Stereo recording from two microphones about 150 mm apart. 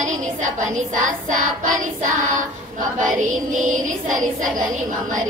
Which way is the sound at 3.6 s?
55° right (ahead or behind).